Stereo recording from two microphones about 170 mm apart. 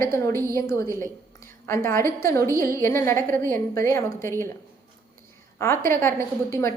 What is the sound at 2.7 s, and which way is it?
A woman's voice, 15° left (ahead or behind).